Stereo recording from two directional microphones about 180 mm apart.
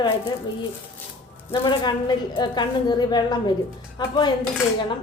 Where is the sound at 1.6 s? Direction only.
25° left (ahead or behind).